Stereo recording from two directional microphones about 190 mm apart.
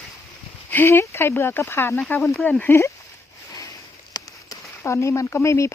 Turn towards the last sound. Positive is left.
turn(degrees=15)  # may be behind; listen again after turning